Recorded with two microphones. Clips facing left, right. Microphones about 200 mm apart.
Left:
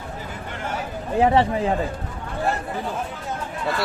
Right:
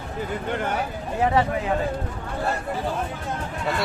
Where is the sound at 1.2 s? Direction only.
30° left (ahead or behind).